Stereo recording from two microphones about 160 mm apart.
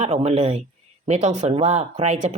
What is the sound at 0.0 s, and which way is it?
Speech, 40° right (ahead or behind).